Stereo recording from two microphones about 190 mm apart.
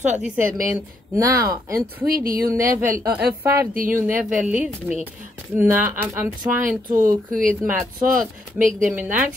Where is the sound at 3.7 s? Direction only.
45° right (ahead or behind).